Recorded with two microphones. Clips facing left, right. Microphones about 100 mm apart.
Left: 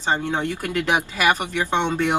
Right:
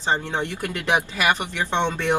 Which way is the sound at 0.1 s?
10° left (ahead or behind).